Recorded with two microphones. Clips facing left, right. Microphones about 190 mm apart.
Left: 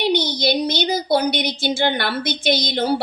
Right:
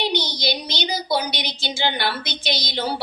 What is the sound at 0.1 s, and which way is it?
A woman's voice, 55° left (ahead or behind).